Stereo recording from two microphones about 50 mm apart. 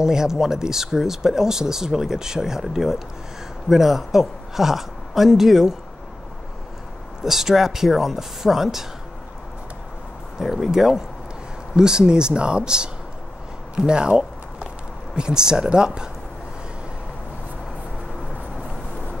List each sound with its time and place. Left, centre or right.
0.0 s a woman's voice: centre
7.2 s speech: centre
10.4 s speech: centre
13.7 s a sound: centre
15.1 s speech: centre